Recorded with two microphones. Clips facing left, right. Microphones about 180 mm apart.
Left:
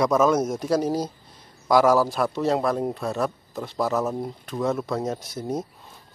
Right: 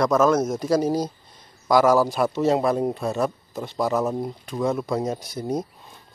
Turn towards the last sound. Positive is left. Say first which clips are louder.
# right 2 dB
turn(degrees=5)  # may be behind; listen again after turning